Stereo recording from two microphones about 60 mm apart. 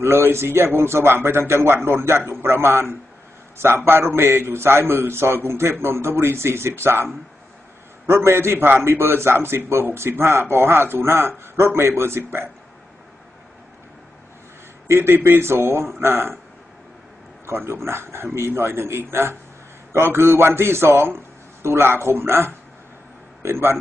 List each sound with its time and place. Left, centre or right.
0.0 s a man's voice: right
8.1 s a man's voice: right
14.9 s speech: right
17.8 s a man's voice: right